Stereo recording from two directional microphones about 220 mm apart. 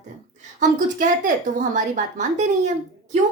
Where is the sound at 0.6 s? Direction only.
35° right (ahead or behind).